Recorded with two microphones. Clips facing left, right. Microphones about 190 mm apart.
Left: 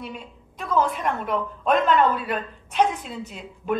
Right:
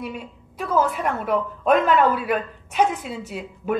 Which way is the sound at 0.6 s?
5° right (ahead or behind).